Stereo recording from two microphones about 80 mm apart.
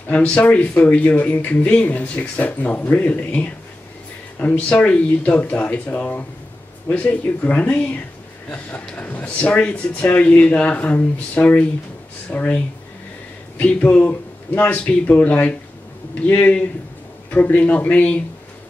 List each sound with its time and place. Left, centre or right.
0.1 s speech: centre